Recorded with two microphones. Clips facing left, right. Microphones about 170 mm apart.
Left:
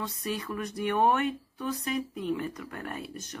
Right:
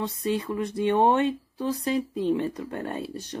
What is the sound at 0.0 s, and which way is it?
Speech, 25° right (ahead or behind).